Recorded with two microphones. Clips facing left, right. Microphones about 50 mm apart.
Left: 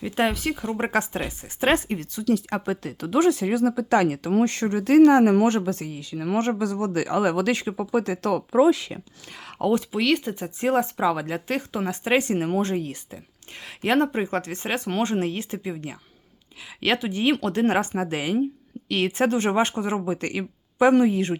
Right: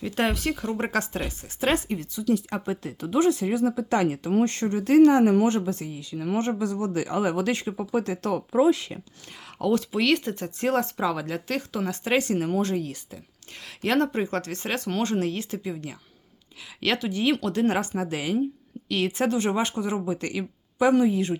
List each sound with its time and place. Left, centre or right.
0.0 s speech: centre
0.7 s speech: centre
1.6 s speech: left
2.0 s a woman's voice: left
2.3 s speech: left
9.6 s speech: left
9.9 s speech: centre; by 21.3 s left